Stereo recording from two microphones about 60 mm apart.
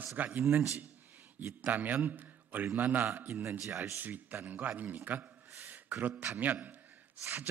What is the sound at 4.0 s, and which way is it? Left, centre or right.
A man's voice, right.